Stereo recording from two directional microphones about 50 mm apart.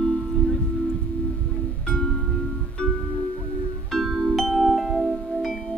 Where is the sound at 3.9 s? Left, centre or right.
Centre.